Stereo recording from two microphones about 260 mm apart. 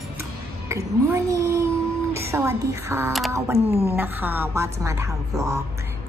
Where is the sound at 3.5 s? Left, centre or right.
Right.